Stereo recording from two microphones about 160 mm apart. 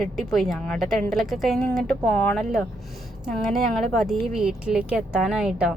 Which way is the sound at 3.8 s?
Centre (ahead or behind).